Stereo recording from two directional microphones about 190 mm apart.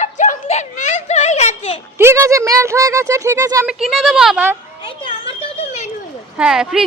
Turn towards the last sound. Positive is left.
turn(degrees=-5)  # may be behind; listen again after turning